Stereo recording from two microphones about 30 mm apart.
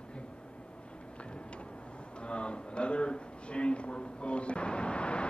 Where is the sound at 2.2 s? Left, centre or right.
Left.